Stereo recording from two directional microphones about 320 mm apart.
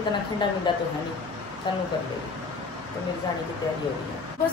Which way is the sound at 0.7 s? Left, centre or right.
Centre.